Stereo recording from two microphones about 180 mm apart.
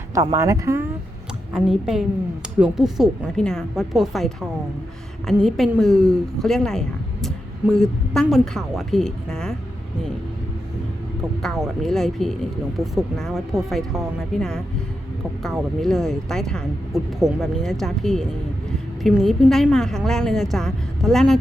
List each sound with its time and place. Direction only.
0.1 s speech: 20° right (ahead or behind)
1.5 s speech: 5° right (ahead or behind)
11.4 s speech: centre (ahead or behind)